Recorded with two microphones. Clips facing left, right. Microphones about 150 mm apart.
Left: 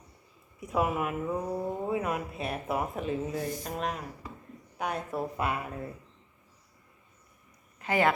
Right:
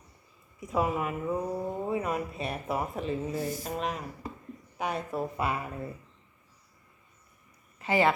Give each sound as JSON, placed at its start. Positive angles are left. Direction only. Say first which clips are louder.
{"t": 0.6, "sound": "speech", "louder": "even", "side_deg": 5}
{"t": 7.8, "sound": "speech", "louder": "right 1 dB", "side_deg": 0}